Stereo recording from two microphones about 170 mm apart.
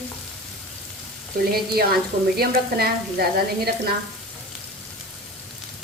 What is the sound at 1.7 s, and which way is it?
A woman's voice, 65° right (ahead or behind).